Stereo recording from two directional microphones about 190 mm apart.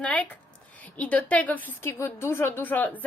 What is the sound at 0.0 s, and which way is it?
A woman's voice, 5° left (ahead or behind).